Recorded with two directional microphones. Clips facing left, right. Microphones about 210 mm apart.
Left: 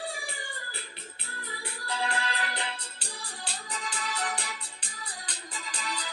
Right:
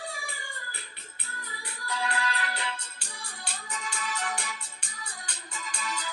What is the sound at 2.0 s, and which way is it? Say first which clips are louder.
Music: right 3 dB; 30° left (ahead or behind).